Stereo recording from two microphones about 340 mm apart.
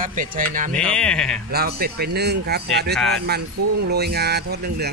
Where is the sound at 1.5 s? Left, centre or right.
Right.